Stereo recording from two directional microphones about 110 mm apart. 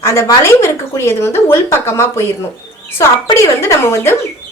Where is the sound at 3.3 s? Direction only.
25° left (ahead or behind).